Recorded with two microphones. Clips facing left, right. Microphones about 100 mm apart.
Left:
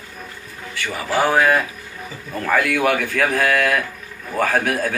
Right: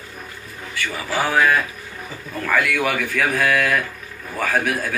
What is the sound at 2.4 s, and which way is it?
Speech, 25° left (ahead or behind).